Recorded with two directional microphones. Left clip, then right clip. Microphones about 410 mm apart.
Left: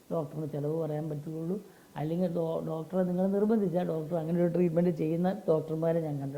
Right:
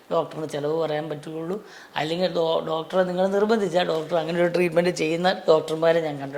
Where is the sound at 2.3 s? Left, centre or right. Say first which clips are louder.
Right 10 dB; centre.